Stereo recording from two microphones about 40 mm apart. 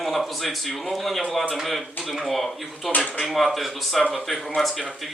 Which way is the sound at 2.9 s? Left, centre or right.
Left.